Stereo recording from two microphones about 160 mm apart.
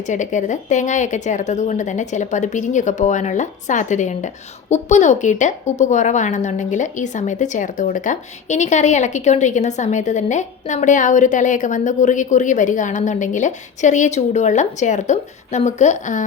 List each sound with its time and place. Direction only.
0.1 s a woman's voice: 50° left (ahead or behind)